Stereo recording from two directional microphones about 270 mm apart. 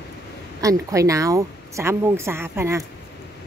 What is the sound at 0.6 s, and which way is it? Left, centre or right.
Speech, centre.